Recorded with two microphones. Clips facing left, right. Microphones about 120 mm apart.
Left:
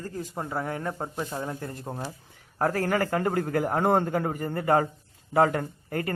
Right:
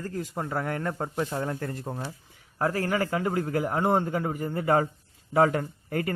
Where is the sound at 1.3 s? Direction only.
5° left (ahead or behind).